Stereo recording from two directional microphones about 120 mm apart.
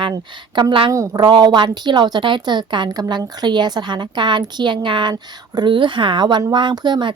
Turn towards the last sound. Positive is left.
turn(degrees=-40)  # may be behind; listen again after turning